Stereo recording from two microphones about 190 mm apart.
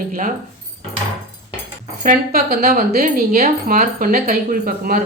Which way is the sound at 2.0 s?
50° right (ahead or behind).